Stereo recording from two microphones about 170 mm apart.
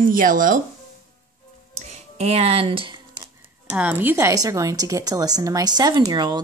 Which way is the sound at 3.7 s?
10° right (ahead or behind).